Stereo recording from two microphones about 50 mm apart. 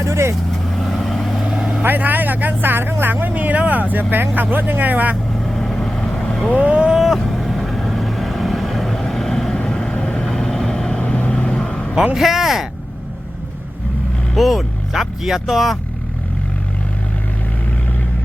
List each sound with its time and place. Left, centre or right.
0.0 s vehicle: right
0.9 s vehicle: centre
1.8 s speech: right
5.4 s vehicle: centre
6.9 s vehicle: centre; by 11.4 s left
11.4 s vehicle: centre
12.1 s speech: centre
14.3 s speech: centre